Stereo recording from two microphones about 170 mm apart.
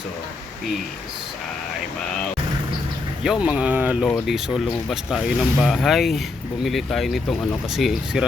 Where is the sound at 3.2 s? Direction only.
5° right (ahead or behind).